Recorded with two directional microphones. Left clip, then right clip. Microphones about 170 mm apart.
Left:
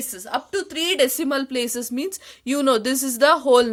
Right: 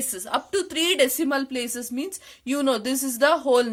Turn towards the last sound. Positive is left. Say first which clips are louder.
# left 4 dB
turn(degrees=35)  # may be behind; listen again after turning